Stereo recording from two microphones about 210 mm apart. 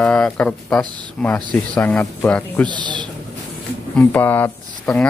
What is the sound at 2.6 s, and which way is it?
Speech, 20° right (ahead or behind).